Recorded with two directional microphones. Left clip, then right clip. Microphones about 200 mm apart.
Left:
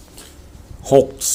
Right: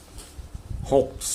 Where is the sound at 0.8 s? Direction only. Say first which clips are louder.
Left 8 dB; 30° left (ahead or behind).